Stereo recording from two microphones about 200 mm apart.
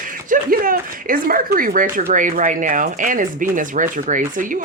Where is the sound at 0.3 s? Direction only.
45° right (ahead or behind).